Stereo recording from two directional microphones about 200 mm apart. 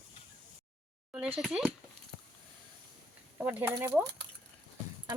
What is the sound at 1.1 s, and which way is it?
Speech, 5° right (ahead or behind).